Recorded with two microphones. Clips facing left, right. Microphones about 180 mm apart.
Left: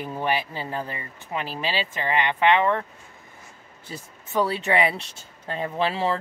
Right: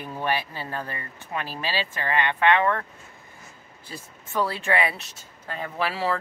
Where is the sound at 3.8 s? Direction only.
20° left (ahead or behind).